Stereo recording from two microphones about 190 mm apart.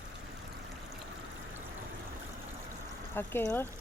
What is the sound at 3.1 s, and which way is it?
Speech, 10° left (ahead or behind).